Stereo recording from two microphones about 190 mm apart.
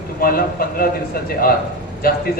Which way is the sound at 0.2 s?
50° left (ahead or behind).